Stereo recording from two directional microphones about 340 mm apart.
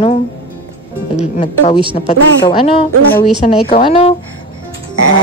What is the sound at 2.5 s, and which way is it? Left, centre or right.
A woman's voice, centre.